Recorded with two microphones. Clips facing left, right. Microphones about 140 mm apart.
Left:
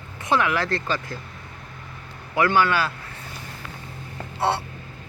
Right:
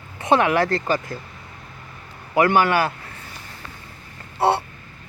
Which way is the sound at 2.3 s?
45° right (ahead or behind).